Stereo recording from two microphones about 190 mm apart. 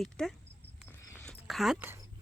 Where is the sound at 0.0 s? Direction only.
Centre (ahead or behind).